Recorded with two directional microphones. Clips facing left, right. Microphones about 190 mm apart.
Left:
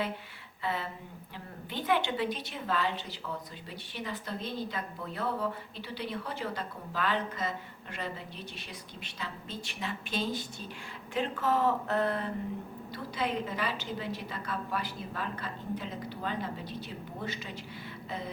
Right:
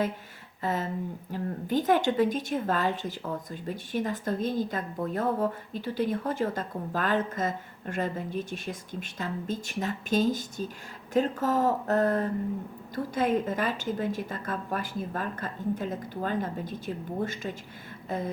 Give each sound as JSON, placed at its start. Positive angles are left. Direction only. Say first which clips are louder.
{"t": 0.6, "sound": "speech", "louder": "right 6 dB", "side_deg": -45}